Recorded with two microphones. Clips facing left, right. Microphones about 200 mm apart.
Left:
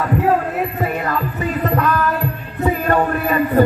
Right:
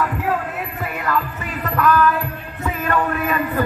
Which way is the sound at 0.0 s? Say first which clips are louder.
Left 5 dB; 35° left (ahead or behind).